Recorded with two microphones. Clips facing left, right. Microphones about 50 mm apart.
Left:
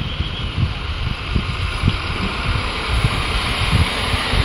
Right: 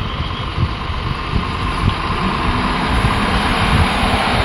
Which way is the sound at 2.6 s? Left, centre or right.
Right.